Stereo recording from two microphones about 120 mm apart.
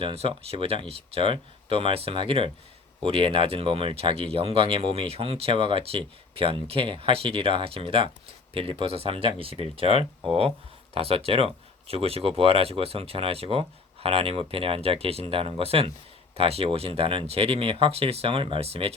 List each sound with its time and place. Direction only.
0.0 s speech: 55° right (ahead or behind)